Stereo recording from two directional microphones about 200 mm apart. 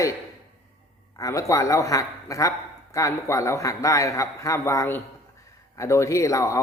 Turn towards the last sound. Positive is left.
turn(degrees=15)  # may be behind; listen again after turning